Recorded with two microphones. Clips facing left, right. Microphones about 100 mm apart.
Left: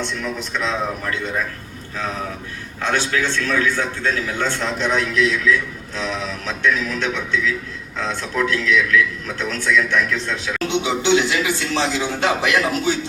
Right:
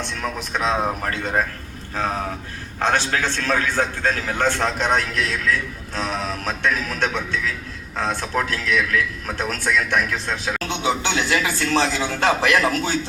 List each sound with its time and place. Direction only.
0.2 s a man's voice: 45° right (ahead or behind)
2.8 s a man's voice: 40° right (ahead or behind)